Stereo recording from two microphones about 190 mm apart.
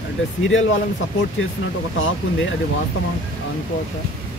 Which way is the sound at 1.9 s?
90° left.